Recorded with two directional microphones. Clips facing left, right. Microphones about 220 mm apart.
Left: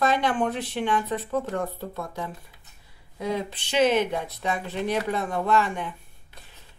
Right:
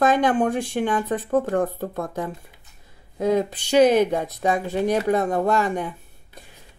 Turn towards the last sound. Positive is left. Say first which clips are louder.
# right 3 dB
turn(degrees=-40)  # may be behind; listen again after turning